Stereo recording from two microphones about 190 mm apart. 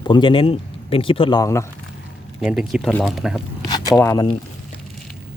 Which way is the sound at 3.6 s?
20° left (ahead or behind).